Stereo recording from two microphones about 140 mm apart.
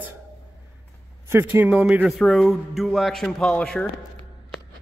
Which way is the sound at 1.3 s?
15° right (ahead or behind).